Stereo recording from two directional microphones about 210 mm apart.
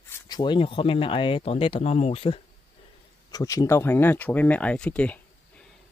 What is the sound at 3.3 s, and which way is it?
Speech, 15° left (ahead or behind).